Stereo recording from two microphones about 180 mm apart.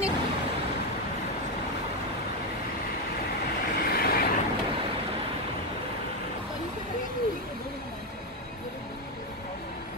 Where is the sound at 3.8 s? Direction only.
55° left (ahead or behind).